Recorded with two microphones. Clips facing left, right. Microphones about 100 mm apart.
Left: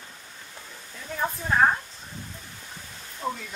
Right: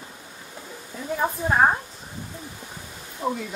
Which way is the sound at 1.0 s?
20° right (ahead or behind).